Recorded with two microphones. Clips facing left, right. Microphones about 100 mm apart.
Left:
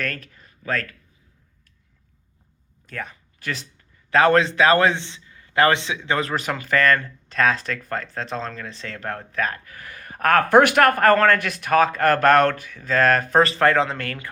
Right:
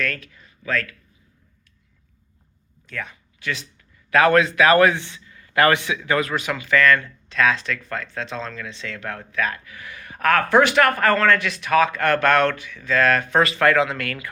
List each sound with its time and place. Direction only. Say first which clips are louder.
0.0 s speech: right 2 dB; 40° left (ahead or behind)
2.8 s a man's voice: even; 40° left (ahead or behind)